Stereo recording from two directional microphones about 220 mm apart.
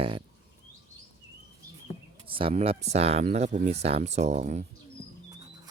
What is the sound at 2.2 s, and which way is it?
Speech, 25° right (ahead or behind).